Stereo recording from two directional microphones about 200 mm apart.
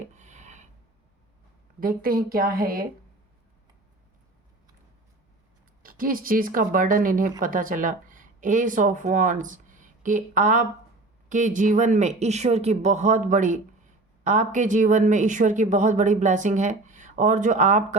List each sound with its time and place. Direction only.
0.1 s rub: 35° right (ahead or behind)
1.8 s speech: 45° right (ahead or behind)
5.8 s speech: 45° right (ahead or behind)